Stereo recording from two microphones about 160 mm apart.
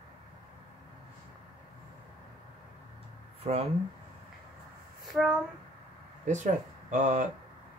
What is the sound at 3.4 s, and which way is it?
Speech, 40° right (ahead or behind).